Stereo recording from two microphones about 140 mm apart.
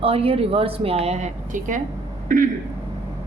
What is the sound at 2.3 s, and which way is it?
Speech, 80° right.